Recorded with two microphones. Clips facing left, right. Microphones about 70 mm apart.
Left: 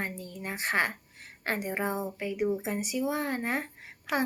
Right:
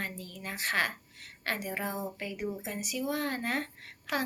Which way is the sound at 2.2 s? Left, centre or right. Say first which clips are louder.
Left 7 dB; centre.